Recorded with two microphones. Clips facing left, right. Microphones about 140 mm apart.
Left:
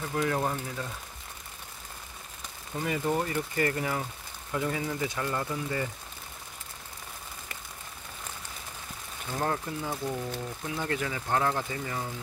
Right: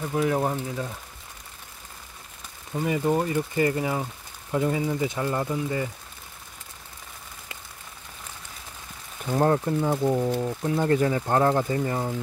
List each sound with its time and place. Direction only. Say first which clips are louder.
0.3 s speech: right 4 dB; 20° right (ahead or behind)
2.7 s speech: right 5 dB; 20° right (ahead or behind)
9.3 s speech: right 9 dB; 40° right (ahead or behind)